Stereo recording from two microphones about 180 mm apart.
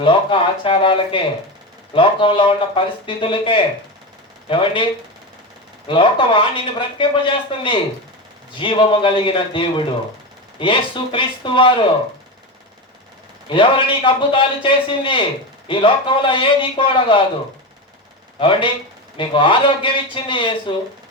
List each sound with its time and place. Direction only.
0.0 s speech: 30° left (ahead or behind)
5.9 s speech: 30° left (ahead or behind)
13.5 s speech: 30° left (ahead or behind)
18.3 s speech: 30° left (ahead or behind)